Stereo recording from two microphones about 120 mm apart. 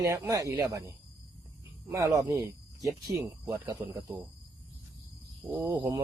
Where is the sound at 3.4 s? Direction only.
30° right (ahead or behind).